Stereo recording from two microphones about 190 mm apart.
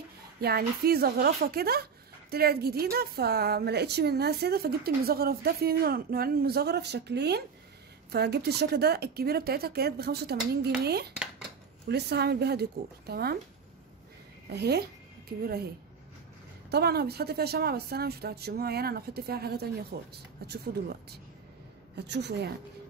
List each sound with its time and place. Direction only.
0.4 s a woman's voice: 55° right (ahead or behind)
14.5 s speech: 60° right (ahead or behind)
16.7 s a woman's voice: 55° right (ahead or behind)